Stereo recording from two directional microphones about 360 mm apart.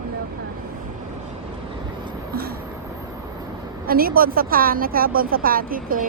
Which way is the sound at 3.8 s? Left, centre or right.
Right.